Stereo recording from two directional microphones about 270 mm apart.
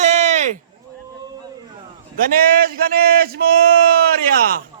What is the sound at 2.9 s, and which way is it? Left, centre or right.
Speech, right.